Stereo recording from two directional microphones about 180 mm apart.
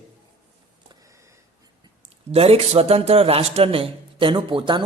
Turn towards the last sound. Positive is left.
turn(degrees=-25)  # may be behind; listen again after turning